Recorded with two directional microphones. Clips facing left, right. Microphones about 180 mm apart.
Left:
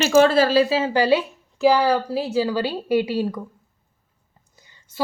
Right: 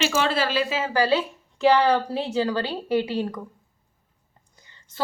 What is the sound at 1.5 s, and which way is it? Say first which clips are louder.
A woman's voice: left 1 dB; 5° left (ahead or behind).